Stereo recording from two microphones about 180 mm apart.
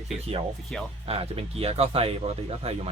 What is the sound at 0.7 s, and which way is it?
Speech, 5° left (ahead or behind).